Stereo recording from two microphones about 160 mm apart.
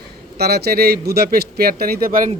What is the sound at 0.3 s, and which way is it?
Speech, 80° right.